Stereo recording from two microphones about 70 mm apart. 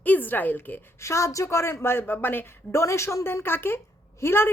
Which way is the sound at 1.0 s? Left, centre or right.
Left.